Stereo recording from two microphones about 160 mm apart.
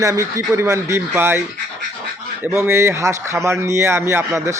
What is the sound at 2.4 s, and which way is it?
Speech, 15° right (ahead or behind).